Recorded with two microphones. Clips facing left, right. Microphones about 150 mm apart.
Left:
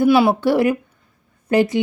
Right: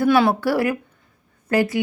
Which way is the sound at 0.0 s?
15° left (ahead or behind).